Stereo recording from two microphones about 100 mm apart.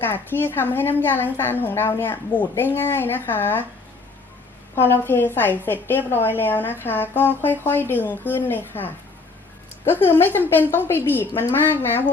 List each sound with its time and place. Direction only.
0.0 s a woman's voice: 20° left (ahead or behind)
4.7 s a woman's voice: 25° left (ahead or behind)
10.1 s a woman's voice: 20° left (ahead or behind)